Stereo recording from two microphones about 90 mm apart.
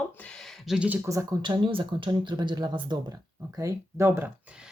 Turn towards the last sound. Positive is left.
turn(degrees=-30)  # may be behind; listen again after turning